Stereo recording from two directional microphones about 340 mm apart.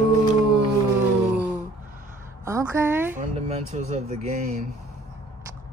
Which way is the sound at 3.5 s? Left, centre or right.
Centre.